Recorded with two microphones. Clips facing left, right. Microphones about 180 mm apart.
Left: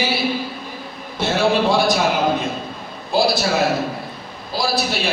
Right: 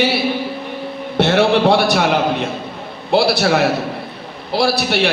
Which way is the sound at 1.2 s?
70° right (ahead or behind).